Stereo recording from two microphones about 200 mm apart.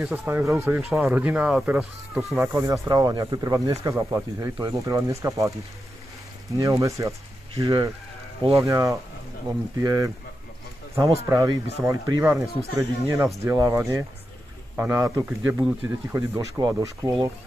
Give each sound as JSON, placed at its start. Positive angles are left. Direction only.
{"t": 0.0, "sound": "speech", "side_deg": 0}
{"t": 0.3, "sound": "speech", "side_deg": -15}
{"t": 6.5, "sound": "speech", "side_deg": -15}
{"t": 11.2, "sound": "speech", "side_deg": -15}